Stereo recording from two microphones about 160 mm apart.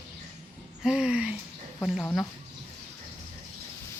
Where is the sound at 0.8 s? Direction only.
5° right (ahead or behind).